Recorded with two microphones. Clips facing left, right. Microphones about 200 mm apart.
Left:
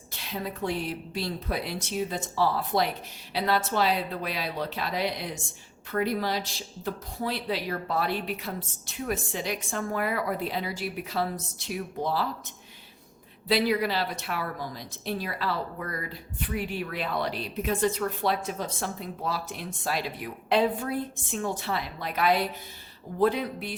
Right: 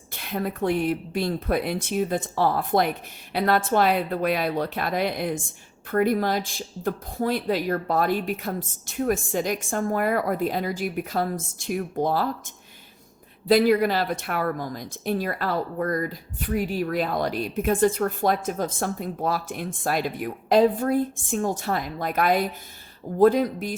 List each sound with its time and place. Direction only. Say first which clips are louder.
0.2 s speech: right 6 dB; 55° right (ahead or behind)
13.5 s speech: right 7 dB; 50° right (ahead or behind)